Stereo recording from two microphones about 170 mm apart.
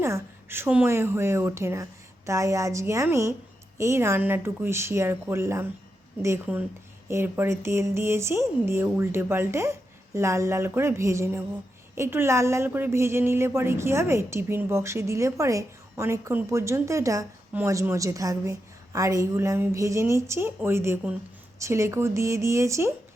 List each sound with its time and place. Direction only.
0.0 s a woman's voice: 15° right (ahead or behind)